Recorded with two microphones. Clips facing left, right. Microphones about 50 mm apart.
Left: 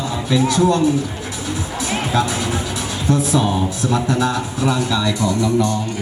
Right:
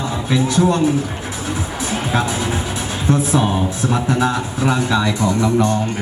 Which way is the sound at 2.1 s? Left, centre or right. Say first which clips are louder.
Even; right.